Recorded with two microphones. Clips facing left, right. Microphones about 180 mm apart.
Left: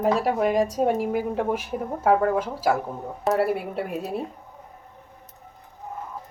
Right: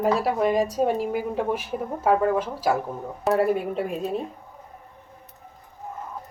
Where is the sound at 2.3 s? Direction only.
10° left (ahead or behind).